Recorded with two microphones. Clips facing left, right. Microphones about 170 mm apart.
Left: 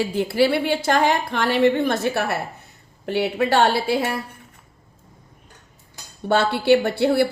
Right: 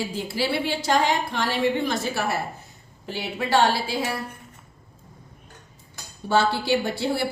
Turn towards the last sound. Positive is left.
turn(degrees=60)  # may be behind; listen again after turning